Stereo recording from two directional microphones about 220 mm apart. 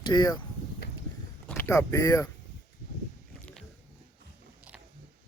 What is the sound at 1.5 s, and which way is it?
Speech, 10° left (ahead or behind).